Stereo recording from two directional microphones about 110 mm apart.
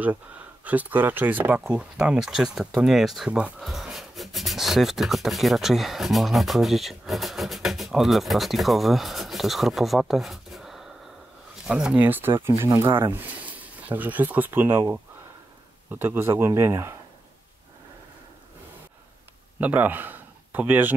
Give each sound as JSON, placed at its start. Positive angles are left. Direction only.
{"t": 0.7, "sound": "speech", "side_deg": -15}
{"t": 19.6, "sound": "speech", "side_deg": -15}